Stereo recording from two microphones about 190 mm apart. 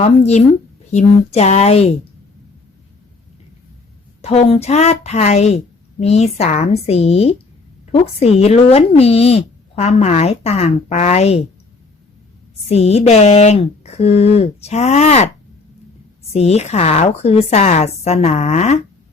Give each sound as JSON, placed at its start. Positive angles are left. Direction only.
{"t": 0.0, "sound": "speech", "side_deg": 35}
{"t": 4.2, "sound": "speech", "side_deg": 35}
{"t": 12.6, "sound": "speech", "side_deg": 35}